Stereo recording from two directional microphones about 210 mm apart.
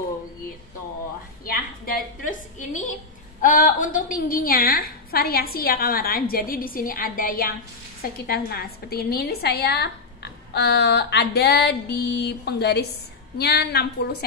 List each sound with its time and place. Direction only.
1.4 s a woman's voice: 45° left (ahead or behind)